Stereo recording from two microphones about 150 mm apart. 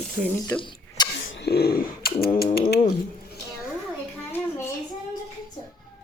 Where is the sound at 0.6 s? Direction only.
30° left (ahead or behind).